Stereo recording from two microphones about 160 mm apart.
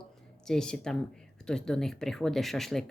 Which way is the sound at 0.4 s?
5° left (ahead or behind).